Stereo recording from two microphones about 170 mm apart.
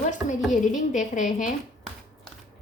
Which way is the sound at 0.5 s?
50° left (ahead or behind).